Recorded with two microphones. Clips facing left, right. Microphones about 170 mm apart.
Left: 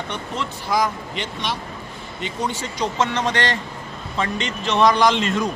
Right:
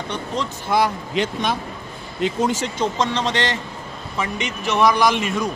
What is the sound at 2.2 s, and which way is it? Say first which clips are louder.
Speech: right 6 dB; 90° right.